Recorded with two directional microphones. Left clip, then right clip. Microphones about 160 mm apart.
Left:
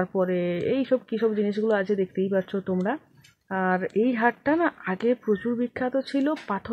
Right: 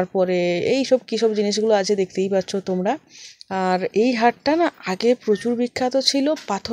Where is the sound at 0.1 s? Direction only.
25° right (ahead or behind).